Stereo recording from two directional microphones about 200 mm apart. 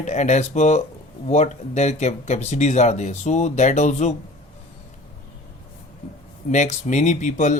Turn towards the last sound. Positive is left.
turn(degrees=35)  # may be behind; listen again after turning